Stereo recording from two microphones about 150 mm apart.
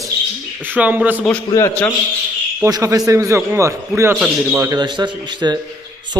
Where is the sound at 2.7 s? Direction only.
25° right (ahead or behind).